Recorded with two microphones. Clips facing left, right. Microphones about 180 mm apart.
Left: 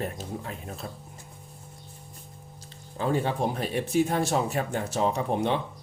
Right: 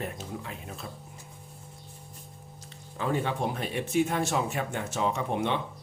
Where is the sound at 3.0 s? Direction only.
35° left (ahead or behind).